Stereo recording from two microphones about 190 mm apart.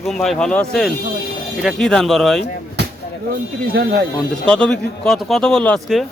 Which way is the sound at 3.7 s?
60° right (ahead or behind).